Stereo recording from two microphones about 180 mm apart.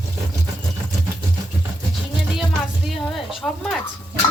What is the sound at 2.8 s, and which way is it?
Speech, centre (ahead or behind).